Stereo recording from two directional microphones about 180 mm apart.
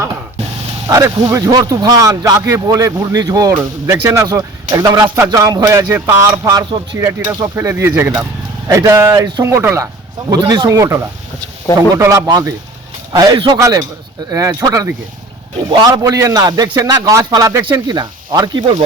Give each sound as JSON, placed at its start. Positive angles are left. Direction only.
{"t": 0.9, "sound": "speech", "side_deg": -20}